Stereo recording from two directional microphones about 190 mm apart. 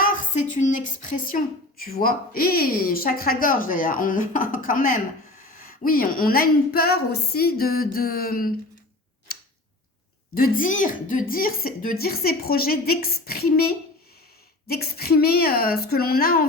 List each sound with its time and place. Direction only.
0.0 s a woman's voice: 45° left (ahead or behind)
9.3 s tick-tock: 50° left (ahead or behind)
10.3 s speech: 50° left (ahead or behind)